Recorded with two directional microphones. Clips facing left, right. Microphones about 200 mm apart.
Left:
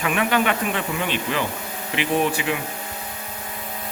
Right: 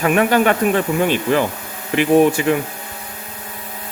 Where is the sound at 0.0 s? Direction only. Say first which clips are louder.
Right 6 dB; 45° right (ahead or behind).